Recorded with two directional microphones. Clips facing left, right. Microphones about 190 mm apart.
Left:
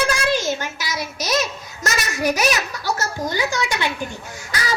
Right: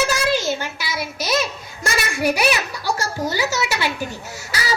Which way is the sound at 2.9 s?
10° right (ahead or behind).